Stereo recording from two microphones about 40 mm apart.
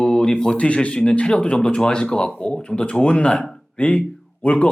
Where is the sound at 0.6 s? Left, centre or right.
Left.